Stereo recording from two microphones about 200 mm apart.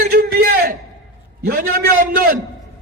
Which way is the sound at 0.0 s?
50° right (ahead or behind).